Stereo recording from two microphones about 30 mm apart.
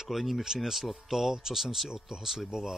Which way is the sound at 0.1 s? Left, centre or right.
Centre.